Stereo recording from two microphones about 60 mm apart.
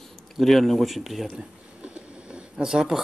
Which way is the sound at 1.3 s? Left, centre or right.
Centre.